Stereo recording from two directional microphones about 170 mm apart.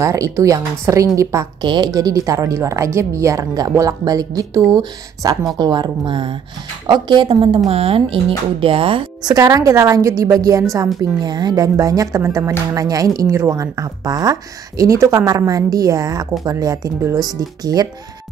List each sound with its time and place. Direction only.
0.0 s speech: 20° right (ahead or behind)